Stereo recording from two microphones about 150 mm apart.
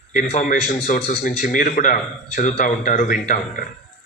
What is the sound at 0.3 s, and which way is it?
Speech, 55° left (ahead or behind).